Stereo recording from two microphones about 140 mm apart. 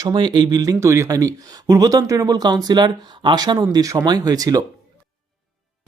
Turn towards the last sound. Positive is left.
turn(degrees=-25)  # may be behind; listen again after turning